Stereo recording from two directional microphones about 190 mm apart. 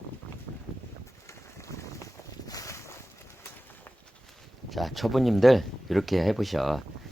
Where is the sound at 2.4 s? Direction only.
20° left (ahead or behind).